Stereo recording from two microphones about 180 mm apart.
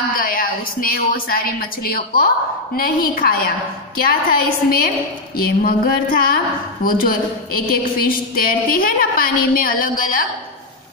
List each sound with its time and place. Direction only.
0.1 s a woman's voice: 55° left (ahead or behind)